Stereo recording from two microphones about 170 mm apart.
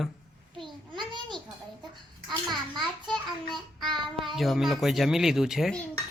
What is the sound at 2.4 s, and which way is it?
Child singing, centre (ahead or behind).